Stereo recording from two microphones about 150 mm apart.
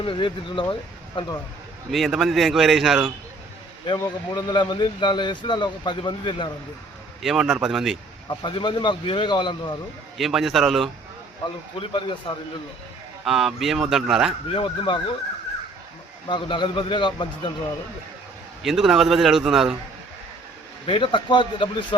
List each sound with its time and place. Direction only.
0.0 s speech: 35° left (ahead or behind)
1.9 s a man's voice: centre (ahead or behind)
3.8 s speech: 30° left (ahead or behind)
7.2 s a man's voice: centre (ahead or behind)
8.3 s speech: 30° left (ahead or behind)
10.2 s a man's voice: centre (ahead or behind)
11.8 s speech: 35° left (ahead or behind)
13.2 s a man's voice: centre (ahead or behind)
14.4 s speech: 40° left (ahead or behind)
16.3 s speech: 30° left (ahead or behind)
18.6 s a man's voice: centre (ahead or behind)
20.8 s speech: 35° left (ahead or behind)